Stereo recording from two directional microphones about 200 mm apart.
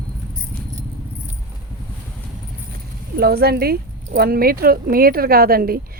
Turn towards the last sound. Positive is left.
turn(degrees=-45)  # may be behind; listen again after turning